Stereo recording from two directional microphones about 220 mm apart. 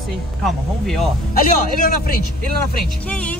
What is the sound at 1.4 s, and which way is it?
Speech, 40° left (ahead or behind).